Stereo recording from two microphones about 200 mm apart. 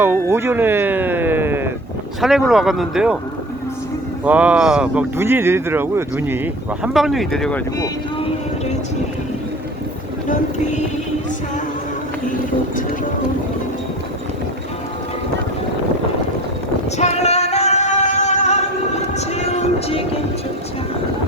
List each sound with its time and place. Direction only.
0.0 s speech: 10° right (ahead or behind)
4.2 s speech: 5° right (ahead or behind)
10.2 s speech: 35° left (ahead or behind)
17.0 s singing: 35° left (ahead or behind)